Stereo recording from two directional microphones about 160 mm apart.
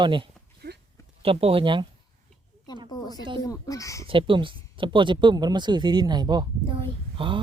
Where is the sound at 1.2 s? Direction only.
35° right (ahead or behind).